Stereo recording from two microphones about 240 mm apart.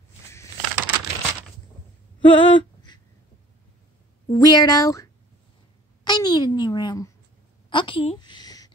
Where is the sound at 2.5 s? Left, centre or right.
Centre.